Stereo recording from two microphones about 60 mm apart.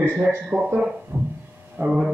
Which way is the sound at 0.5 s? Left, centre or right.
Right.